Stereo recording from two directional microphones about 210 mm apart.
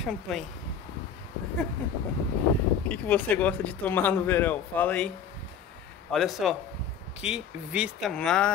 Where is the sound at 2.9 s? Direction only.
5° left (ahead or behind).